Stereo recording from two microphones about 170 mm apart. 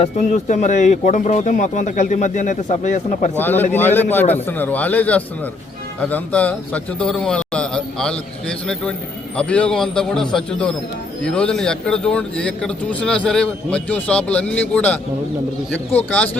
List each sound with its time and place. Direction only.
0.0 s speech: 40° left (ahead or behind)
3.3 s a man's voice: 10° left (ahead or behind)
16.0 s speech: 5° left (ahead or behind)